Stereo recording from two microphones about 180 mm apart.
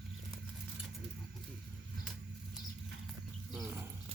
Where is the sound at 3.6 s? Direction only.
10° right (ahead or behind).